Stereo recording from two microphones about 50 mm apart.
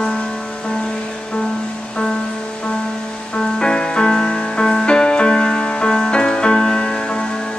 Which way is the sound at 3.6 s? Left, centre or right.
Centre.